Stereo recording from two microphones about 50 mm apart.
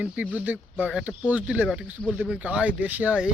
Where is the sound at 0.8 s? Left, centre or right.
Centre.